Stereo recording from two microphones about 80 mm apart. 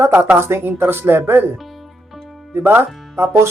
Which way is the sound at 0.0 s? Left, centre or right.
Right.